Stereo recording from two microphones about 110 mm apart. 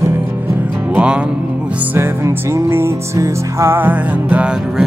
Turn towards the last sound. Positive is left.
turn(degrees=-10)  # may be behind; listen again after turning